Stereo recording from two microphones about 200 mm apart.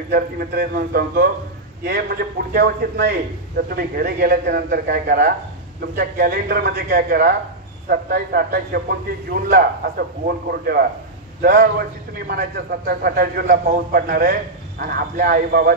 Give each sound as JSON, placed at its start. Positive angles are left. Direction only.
{"t": 0.1, "sound": "a man's voice", "side_deg": -50}